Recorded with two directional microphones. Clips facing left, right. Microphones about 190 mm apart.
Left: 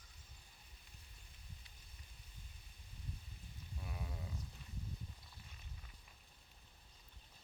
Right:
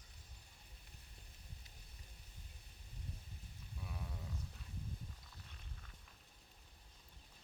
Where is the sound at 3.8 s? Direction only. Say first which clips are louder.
Left 1 dB; centre (ahead or behind).